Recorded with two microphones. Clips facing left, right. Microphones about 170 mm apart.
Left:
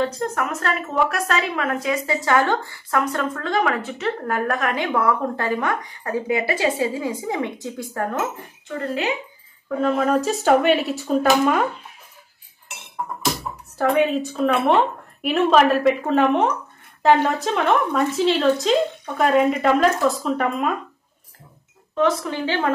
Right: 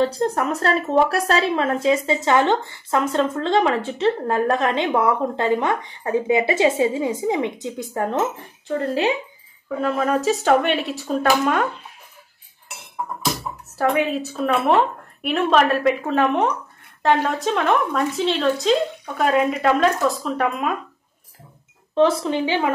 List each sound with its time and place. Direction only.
0.0 s a woman's voice: 30° right (ahead or behind)
8.6 s a woman's voice: 30° right (ahead or behind)
9.8 s speech: centre (ahead or behind)
13.7 s speech: centre (ahead or behind)
21.9 s speech: 25° right (ahead or behind)